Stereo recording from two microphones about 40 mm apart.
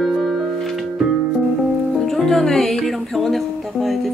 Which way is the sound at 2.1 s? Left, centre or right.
Centre.